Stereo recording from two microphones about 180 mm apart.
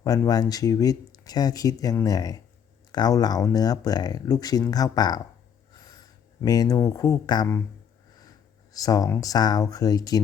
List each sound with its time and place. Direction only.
0.0 s speech: 20° left (ahead or behind)
8.7 s speech: 20° left (ahead or behind)